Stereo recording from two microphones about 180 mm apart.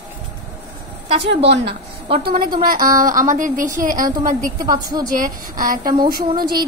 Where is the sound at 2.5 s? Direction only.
50° right (ahead or behind).